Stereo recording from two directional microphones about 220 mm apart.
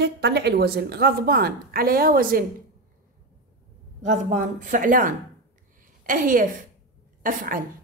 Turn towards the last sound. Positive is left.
turn(degrees=-40)  # may be behind; listen again after turning